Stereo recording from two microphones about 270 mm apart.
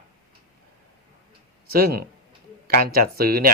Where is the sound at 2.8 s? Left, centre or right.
Right.